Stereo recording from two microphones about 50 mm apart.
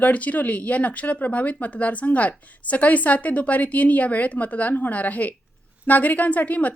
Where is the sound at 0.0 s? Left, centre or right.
Left.